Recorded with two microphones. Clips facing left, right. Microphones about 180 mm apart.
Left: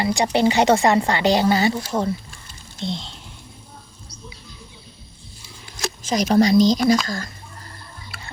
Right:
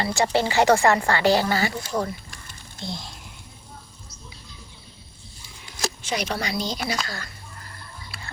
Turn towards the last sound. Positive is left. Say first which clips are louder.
# left 11 dB
turn(degrees=40)  # may be behind; listen again after turning